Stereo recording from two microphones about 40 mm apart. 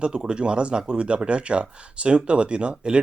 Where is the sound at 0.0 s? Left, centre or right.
Right.